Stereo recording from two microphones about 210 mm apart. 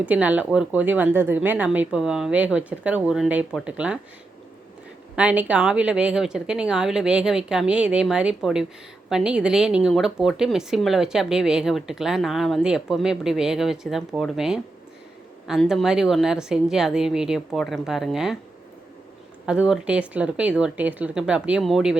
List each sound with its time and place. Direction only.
0.0 s speech: 5° right (ahead or behind)
5.1 s speech: 5° right (ahead or behind)
19.5 s speech: 5° right (ahead or behind)